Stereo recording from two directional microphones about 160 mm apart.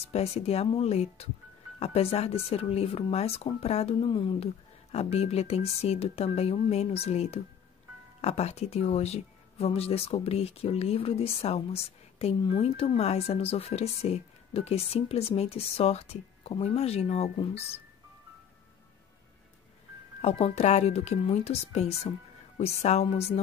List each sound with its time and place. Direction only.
0.1 s speech: 40° left (ahead or behind)
20.2 s a woman's voice: 40° left (ahead or behind)